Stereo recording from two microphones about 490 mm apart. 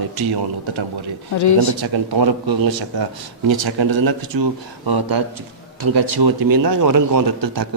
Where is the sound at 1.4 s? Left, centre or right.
Left.